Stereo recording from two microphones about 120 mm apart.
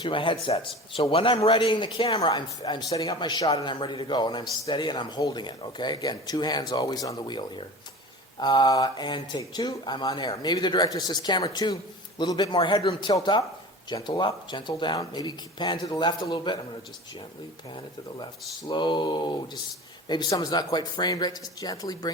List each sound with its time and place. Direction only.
0.0 s a man's voice: 45° left (ahead or behind)
12.5 s a man's voice: 45° left (ahead or behind)
18.7 s a man's voice: 40° left (ahead or behind)